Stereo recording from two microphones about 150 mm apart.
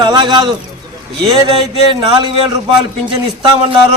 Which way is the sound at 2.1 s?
30° right (ahead or behind).